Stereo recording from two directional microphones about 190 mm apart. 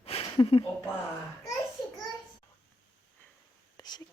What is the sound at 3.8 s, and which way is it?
Whispering, 20° left (ahead or behind).